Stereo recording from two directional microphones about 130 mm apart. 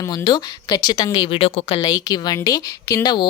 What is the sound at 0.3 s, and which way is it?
Speech, 30° left (ahead or behind).